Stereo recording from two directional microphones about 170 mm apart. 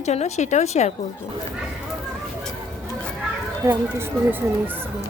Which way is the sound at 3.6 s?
15° right (ahead or behind).